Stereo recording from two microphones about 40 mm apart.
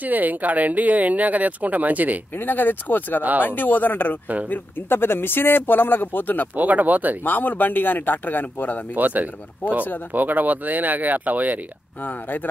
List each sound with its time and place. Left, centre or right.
0.0 s speech: right
2.3 s a man's voice: left
3.2 s speech: right
3.4 s a man's voice: left
6.5 s speech: right
7.2 s a man's voice: left
8.9 s speech: right
12.0 s a man's voice: left